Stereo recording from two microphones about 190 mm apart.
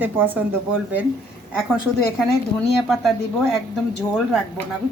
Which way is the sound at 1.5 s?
5° right (ahead or behind).